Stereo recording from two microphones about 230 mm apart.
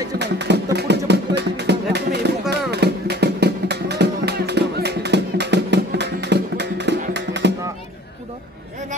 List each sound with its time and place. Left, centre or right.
0.2 s music: right